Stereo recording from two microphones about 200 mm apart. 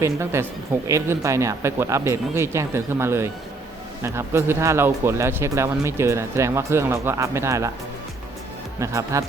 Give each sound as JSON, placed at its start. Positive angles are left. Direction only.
{"t": 0.0, "sound": "speech", "side_deg": -15}
{"t": 8.8, "sound": "speech", "side_deg": -15}